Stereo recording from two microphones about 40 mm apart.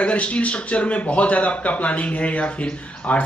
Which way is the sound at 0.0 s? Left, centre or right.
Left.